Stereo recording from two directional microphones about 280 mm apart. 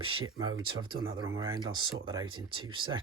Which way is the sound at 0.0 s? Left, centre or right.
Centre.